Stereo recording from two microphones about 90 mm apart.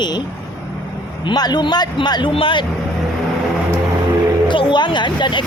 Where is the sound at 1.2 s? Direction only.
50° left (ahead or behind).